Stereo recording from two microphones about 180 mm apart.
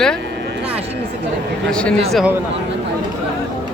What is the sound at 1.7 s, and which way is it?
Speech, 5° left (ahead or behind).